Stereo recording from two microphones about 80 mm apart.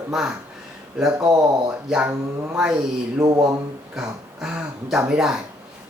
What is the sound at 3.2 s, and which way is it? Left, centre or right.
Speech, right.